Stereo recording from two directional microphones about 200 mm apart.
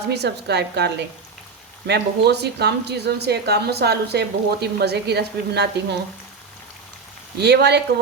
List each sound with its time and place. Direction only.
0.1 s a woman's voice: 55° right (ahead or behind)
7.3 s a woman's voice: 55° right (ahead or behind)